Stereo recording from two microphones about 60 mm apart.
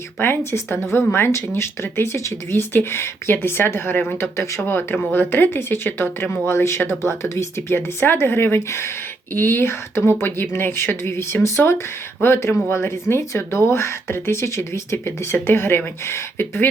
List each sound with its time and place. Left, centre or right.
0.2 s speech: left
4.2 s speech: left
4.6 s speech: left